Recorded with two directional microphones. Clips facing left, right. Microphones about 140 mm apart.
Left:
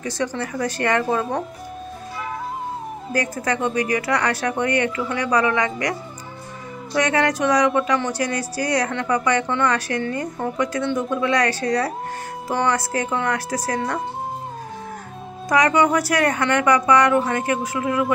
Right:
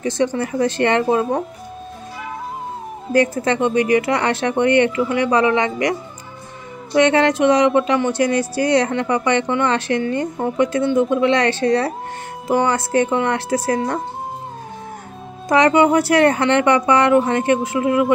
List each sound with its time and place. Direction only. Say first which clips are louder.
0.0 s speech: right 6 dB; 25° right (ahead or behind)
3.1 s speech: right 7 dB; 25° right (ahead or behind)
15.4 s speech: right 4 dB; 25° right (ahead or behind)